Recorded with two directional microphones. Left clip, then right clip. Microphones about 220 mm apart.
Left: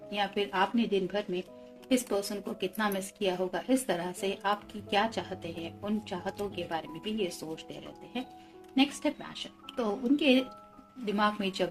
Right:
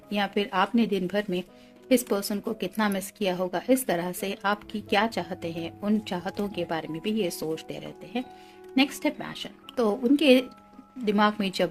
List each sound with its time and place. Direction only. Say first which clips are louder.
0.1 s a woman's voice: right 4 dB; 50° right (ahead or behind)